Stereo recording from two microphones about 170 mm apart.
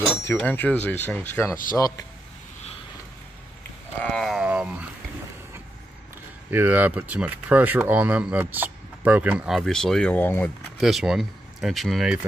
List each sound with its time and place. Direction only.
0.3 s speech: 10° left (ahead or behind)
4.0 s wild animals: centre (ahead or behind)
6.5 s speech: 10° right (ahead or behind); by 10.5 s 10° left (ahead or behind)
10.8 s speech: centre (ahead or behind)